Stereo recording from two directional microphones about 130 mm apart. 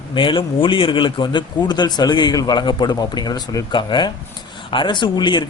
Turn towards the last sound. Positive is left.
turn(degrees=35)  # may be behind; listen again after turning